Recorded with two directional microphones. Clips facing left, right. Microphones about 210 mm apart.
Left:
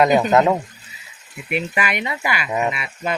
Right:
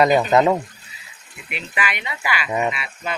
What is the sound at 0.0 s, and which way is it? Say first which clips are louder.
Speech: left 1 dB; centre (ahead or behind).